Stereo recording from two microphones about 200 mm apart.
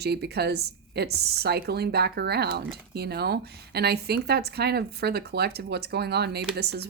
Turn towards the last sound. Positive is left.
turn(degrees=-55)  # may be behind; listen again after turning